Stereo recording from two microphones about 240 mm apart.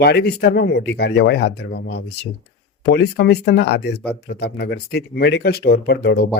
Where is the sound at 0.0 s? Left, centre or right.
Left.